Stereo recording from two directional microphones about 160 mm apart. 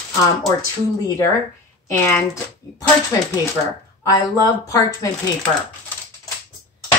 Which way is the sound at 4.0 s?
20° left (ahead or behind).